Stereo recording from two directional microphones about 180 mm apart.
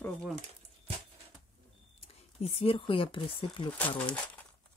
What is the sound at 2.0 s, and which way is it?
Speech, 35° left (ahead or behind).